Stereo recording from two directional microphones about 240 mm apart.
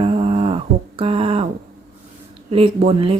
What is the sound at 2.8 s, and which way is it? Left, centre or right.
Speech, right.